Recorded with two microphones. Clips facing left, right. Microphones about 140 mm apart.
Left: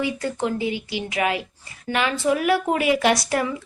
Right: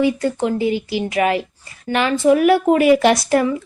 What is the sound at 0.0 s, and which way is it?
A woman's voice, 35° right (ahead or behind).